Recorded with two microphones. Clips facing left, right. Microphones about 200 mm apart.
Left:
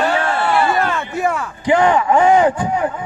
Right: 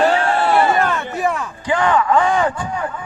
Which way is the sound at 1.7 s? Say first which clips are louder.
Left 3 dB; 25° left (ahead or behind).